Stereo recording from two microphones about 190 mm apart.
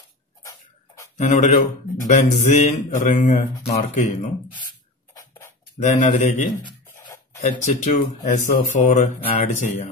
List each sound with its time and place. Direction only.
1.1 s a man's voice: 40° left (ahead or behind)
5.8 s speech: 40° left (ahead or behind)
6.5 s a sound: 20° left (ahead or behind)
7.6 s speech: 35° left (ahead or behind)